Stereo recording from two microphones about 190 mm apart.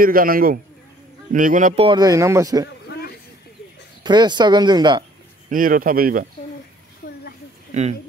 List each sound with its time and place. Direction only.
0.0 s speech: 50° right (ahead or behind)
1.9 s speech: 20° right (ahead or behind)
2.9 s a sound: 55° left (ahead or behind)
4.0 s speech: 25° right (ahead or behind)
5.5 s speech: 45° right (ahead or behind)